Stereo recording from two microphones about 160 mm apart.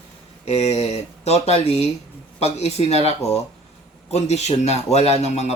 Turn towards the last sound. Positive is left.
turn(degrees=40)  # may be behind; listen again after turning